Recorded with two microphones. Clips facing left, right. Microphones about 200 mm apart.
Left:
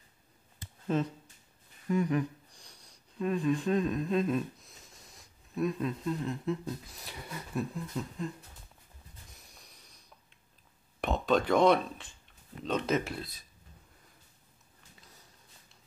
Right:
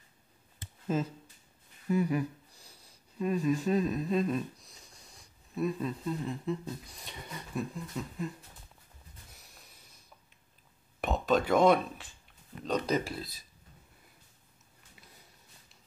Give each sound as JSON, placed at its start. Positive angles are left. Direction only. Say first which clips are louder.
{"t": 0.8, "sound": "speech", "louder": "left 1 dB", "side_deg": -5}
{"t": 11.0, "sound": "speech", "louder": "even", "side_deg": 0}